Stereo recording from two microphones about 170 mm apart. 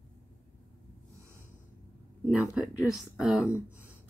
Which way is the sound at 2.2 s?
5° right (ahead or behind).